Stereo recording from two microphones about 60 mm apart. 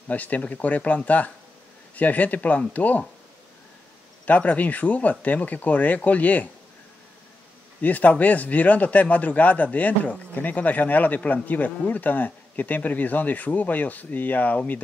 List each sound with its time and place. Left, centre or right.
0.1 s a man's voice: left
4.3 s a man's voice: left
7.8 s a man's voice: left